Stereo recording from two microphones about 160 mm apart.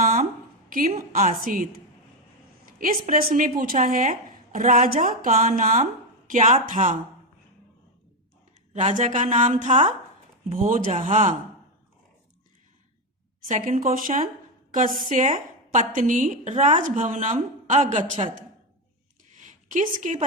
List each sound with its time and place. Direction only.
0.0 s a sound: 60° right (ahead or behind)
0.7 s speech: 60° right (ahead or behind)
8.7 s a woman's voice: 50° right (ahead or behind)
10.5 s a woman's voice: 55° right (ahead or behind)
13.7 s a woman's voice: 60° right (ahead or behind)
19.3 s a sound: 50° right (ahead or behind)